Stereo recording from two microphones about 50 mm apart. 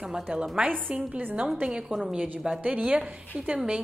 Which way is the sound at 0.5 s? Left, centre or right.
Right.